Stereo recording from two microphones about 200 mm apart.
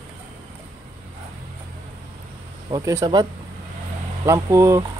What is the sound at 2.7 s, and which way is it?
Speech, 15° right (ahead or behind).